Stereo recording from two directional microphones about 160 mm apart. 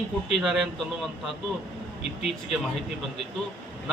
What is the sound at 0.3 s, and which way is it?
A man's voice, centre (ahead or behind).